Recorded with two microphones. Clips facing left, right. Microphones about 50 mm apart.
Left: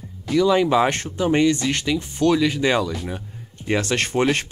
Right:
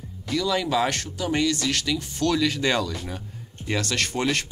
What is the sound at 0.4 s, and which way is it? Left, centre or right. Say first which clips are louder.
Speech: left 7 dB; left.